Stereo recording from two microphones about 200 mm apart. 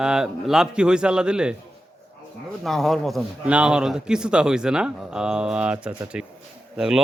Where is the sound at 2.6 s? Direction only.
Centre (ahead or behind).